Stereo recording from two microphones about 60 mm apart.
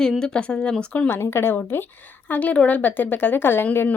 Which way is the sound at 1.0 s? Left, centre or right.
Left.